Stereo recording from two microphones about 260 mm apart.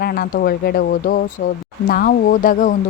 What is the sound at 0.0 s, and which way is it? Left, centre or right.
A woman's voice, left.